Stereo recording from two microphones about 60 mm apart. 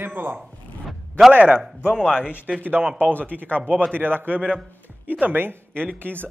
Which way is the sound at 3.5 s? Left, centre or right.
Right.